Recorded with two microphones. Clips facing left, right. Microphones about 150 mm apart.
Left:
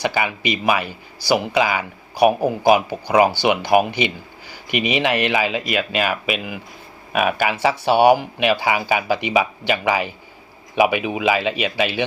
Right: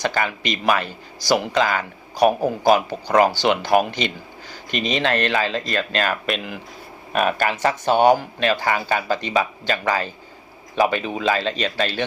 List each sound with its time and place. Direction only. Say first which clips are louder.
0.0 s speech: left 1 dB; 10° left (ahead or behind)